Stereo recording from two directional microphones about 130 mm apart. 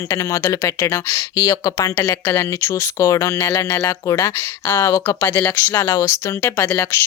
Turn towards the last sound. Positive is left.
turn(degrees=20)  # may be behind; listen again after turning